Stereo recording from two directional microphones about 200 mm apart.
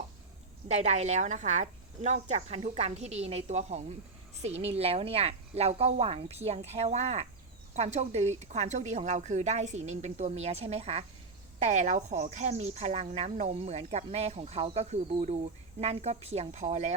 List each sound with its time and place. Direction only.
0.7 s speech: 35° right (ahead or behind)